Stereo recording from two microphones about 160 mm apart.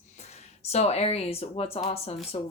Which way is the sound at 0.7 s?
40° left (ahead or behind).